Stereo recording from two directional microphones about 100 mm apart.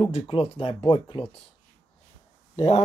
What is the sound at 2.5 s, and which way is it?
Speech, 85° left.